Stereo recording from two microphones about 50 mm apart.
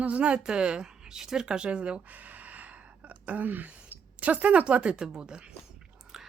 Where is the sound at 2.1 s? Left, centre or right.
Right; by 5.5 s centre.